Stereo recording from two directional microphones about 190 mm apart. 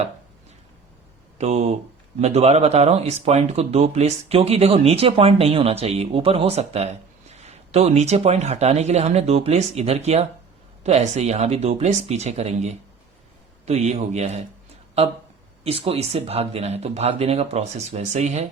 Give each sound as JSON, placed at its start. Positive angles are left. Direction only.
{"t": 1.4, "sound": "speech", "side_deg": -35}
{"t": 15.6, "sound": "speech", "side_deg": -30}